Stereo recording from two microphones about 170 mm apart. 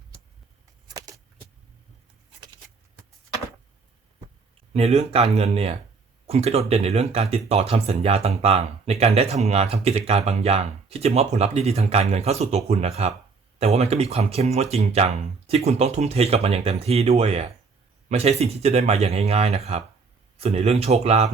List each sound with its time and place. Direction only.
4.7 s speech: 35° right (ahead or behind)